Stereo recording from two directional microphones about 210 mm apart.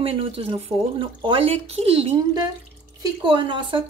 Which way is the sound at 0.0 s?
25° right (ahead or behind).